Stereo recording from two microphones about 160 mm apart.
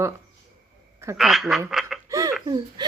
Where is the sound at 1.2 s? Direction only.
Centre (ahead or behind).